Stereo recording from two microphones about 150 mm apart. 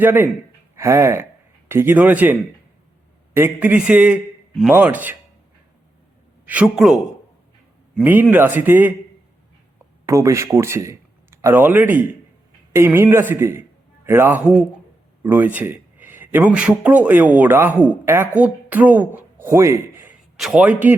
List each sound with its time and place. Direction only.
0.0 s a man's voice: 15° right (ahead or behind)
6.4 s a man's voice: 10° right (ahead or behind)
8.0 s a man's voice: 10° right (ahead or behind)
10.1 s a man's voice: 20° right (ahead or behind)